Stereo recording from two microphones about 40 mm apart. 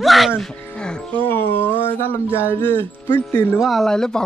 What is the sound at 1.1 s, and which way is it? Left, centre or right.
Speech, left.